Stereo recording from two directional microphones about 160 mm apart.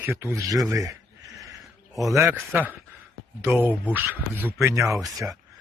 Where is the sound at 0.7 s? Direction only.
20° right (ahead or behind).